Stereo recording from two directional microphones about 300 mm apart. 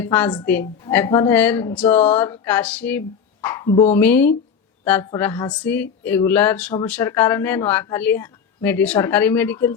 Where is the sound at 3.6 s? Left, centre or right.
Centre.